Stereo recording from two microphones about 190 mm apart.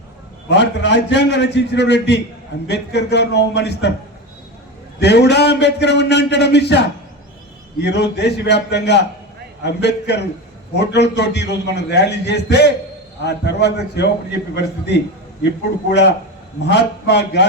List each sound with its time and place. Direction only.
0.5 s a man's voice: 70° left (ahead or behind)
4.9 s a man's voice: 60° left (ahead or behind)